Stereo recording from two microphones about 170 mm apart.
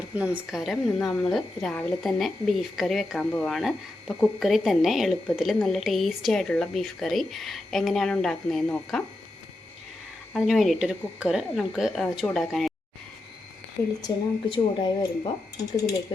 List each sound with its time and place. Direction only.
0.1 s a woman's voice: 5° right (ahead or behind)
10.3 s a woman's voice: centre (ahead or behind)
13.8 s speech: 20° left (ahead or behind)
14.5 s speech: 30° left (ahead or behind)